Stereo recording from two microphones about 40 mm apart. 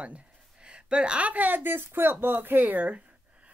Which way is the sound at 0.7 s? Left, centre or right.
Right.